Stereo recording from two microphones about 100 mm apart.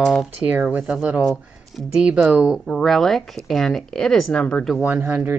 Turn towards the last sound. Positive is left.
turn(degrees=-15)  # may be behind; listen again after turning